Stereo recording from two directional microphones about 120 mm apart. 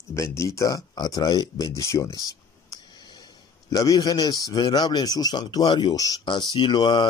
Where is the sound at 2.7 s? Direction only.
40° left (ahead or behind).